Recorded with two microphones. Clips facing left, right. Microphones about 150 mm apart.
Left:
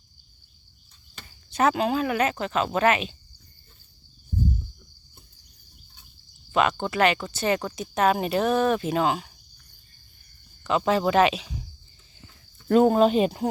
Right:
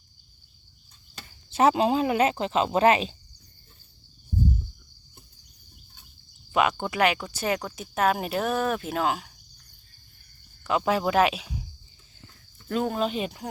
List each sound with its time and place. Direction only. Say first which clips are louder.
1.5 s speech: right 2 dB; 25° right (ahead or behind)
6.5 s speech: left 1 dB; 10° right (ahead or behind)
10.6 s speech: left 2 dB; 5° right (ahead or behind)
12.6 s speech: left 9 dB; 45° left (ahead or behind)